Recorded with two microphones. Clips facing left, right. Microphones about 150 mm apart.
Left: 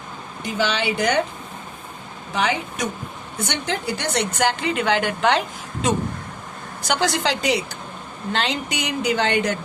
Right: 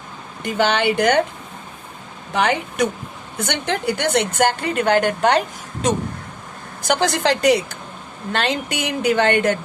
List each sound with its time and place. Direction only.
0.4 s speech: 60° right (ahead or behind)
2.3 s a woman's voice: 60° right (ahead or behind)